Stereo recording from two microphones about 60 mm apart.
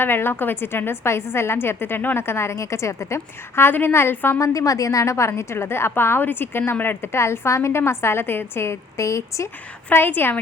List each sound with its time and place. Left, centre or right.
0.0 s a woman's voice: left
4.4 s a woman's voice: left
9.9 s a woman's voice: left